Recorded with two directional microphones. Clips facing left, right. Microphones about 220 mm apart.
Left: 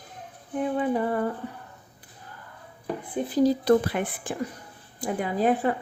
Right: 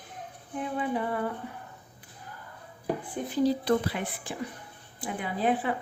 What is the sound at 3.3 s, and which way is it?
Speech, 45° left (ahead or behind).